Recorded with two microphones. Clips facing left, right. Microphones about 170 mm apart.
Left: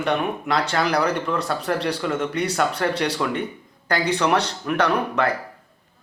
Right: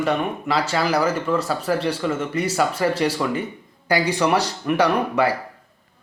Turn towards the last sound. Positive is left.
turn(degrees=-10)  # may be behind; listen again after turning